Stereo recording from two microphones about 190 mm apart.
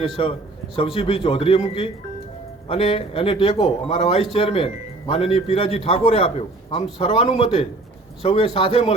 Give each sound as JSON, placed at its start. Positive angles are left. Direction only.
{"t": 0.2, "sound": "a man's voice", "side_deg": 30}